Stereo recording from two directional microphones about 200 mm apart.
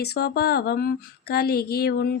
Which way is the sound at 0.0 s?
50° left (ahead or behind).